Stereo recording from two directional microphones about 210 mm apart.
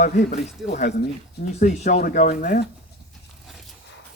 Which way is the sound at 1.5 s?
35° left (ahead or behind).